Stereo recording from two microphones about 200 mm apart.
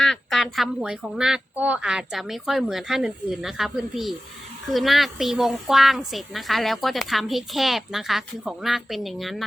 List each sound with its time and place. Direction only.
0.0 s a woman's voice: centre (ahead or behind)